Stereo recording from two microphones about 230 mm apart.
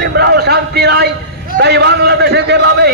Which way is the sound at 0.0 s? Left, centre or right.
Right.